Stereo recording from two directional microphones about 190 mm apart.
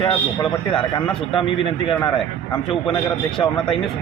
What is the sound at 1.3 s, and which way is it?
Speech, 25° left (ahead or behind).